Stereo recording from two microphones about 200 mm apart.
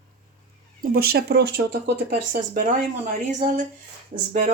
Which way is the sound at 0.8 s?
50° right (ahead or behind).